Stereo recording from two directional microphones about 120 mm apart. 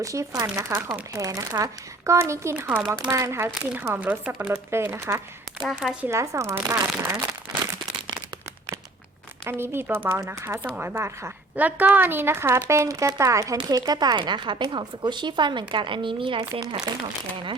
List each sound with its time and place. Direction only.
0.0 s a woman's voice: 25° right (ahead or behind)
5.6 s speech: 5° right (ahead or behind)
6.1 s a woman's voice: 25° right (ahead or behind)
9.4 s a woman's voice: 20° right (ahead or behind); by 17.0 s 35° right (ahead or behind)